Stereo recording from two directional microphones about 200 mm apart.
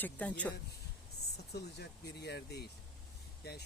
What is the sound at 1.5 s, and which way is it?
Speech, 55° left (ahead or behind).